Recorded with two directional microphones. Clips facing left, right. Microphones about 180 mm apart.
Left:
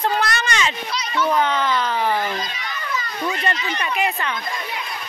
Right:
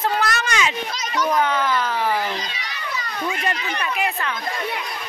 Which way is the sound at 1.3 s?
5° right (ahead or behind).